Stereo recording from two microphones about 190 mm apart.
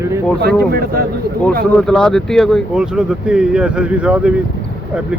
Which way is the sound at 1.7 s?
5° left (ahead or behind).